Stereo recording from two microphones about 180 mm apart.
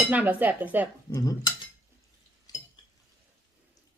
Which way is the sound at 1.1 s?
20° left (ahead or behind).